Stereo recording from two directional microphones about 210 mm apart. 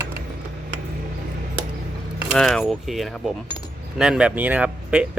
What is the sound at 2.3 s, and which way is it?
Speech, centre (ahead or behind).